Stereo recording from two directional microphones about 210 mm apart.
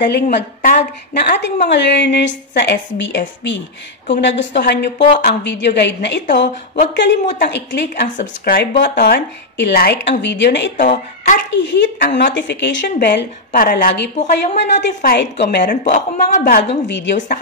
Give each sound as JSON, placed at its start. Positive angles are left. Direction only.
{"t": 0.0, "sound": "a woman's voice", "side_deg": 55}
{"t": 0.6, "sound": "a woman's voice", "side_deg": 45}
{"t": 7.9, "sound": "speech", "side_deg": 45}
{"t": 10.8, "sound": "speech", "side_deg": 35}
{"t": 11.5, "sound": "a woman's voice", "side_deg": 60}
{"t": 14.1, "sound": "speech", "side_deg": 35}
{"t": 15.1, "sound": "a woman's voice", "side_deg": 55}
{"t": 15.6, "sound": "speech", "side_deg": 35}
{"t": 16.8, "sound": "a woman's voice", "side_deg": 55}